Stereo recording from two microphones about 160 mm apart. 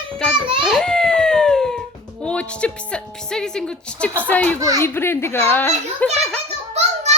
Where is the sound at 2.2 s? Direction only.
5° left (ahead or behind).